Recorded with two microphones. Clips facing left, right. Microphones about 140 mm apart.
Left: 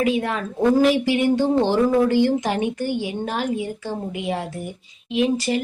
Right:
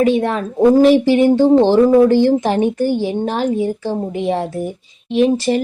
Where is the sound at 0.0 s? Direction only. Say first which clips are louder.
Right 6 dB; 35° right (ahead or behind).